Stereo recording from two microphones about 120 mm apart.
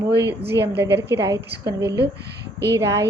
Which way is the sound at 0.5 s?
25° right (ahead or behind).